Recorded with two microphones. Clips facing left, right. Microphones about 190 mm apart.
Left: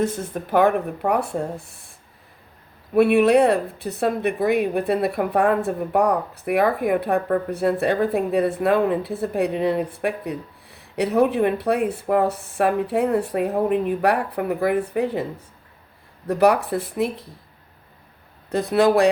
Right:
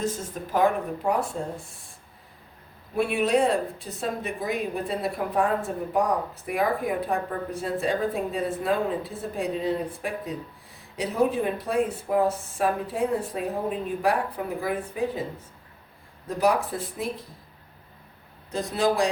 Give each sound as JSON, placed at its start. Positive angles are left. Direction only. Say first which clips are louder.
{"t": 0.0, "sound": "speech", "louder": "left 6 dB", "side_deg": 60}
{"t": 2.9, "sound": "speech", "louder": "left 8 dB", "side_deg": 65}
{"t": 18.5, "sound": "speech", "louder": "left 7 dB", "side_deg": 65}